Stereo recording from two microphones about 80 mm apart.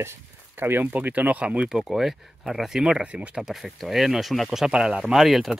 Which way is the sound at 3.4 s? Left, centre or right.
Centre.